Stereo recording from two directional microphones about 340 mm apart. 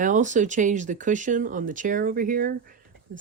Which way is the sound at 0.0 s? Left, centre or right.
Right.